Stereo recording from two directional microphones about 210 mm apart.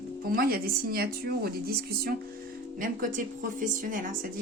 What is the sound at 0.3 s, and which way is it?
A woman's voice, 45° right (ahead or behind).